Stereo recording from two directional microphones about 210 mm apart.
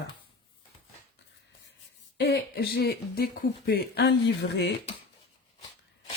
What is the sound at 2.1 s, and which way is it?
Speech, 50° left (ahead or behind).